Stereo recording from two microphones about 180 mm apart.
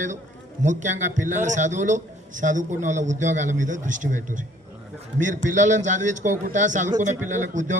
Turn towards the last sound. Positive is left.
turn(degrees=-45)  # may be behind; listen again after turning